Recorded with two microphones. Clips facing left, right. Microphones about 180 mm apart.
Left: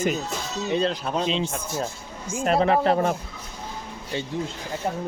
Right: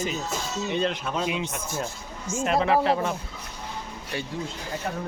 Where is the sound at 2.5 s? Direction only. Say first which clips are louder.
Left 2 dB; 35° left (ahead or behind).